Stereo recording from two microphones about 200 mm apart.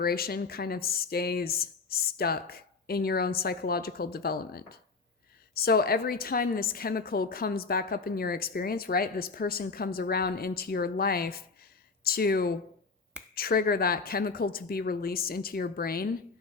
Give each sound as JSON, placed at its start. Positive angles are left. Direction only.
{"t": 0.0, "sound": "a woman's voice", "side_deg": 50}